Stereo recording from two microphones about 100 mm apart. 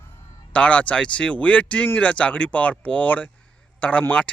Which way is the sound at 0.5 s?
10° left (ahead or behind).